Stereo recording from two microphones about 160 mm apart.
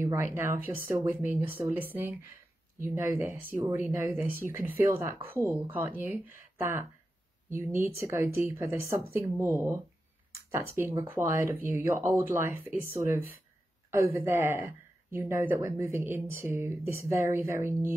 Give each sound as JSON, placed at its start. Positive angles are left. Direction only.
{"t": 0.0, "sound": "speech", "side_deg": -15}